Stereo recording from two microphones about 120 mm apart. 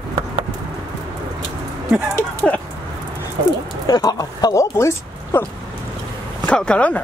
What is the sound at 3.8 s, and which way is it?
Speech, 30° left (ahead or behind).